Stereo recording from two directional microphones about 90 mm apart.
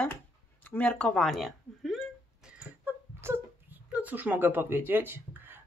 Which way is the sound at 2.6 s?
25° right (ahead or behind).